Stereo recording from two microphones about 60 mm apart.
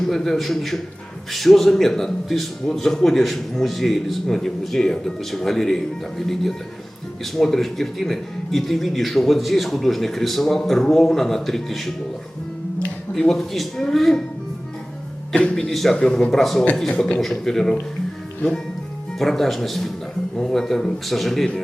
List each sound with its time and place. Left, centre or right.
0.1 s a man's voice: centre
13.1 s speech: centre
15.7 s a man's voice: centre
16.9 s speech: centre
17.2 s speech: centre
19.2 s a man's voice: centre